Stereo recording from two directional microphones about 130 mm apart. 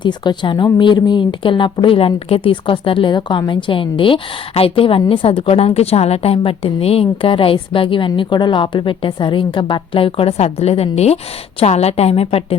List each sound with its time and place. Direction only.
0.0 s a woman's voice: 35° left (ahead or behind)